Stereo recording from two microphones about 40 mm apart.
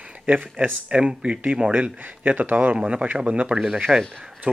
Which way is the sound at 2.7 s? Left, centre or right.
Right.